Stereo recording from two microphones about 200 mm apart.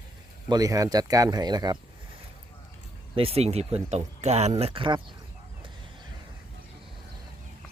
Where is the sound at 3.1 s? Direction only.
30° right (ahead or behind).